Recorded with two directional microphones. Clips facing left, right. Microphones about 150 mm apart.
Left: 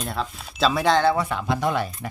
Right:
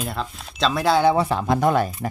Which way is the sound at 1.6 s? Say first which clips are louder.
Right 6 dB; 45° right (ahead or behind).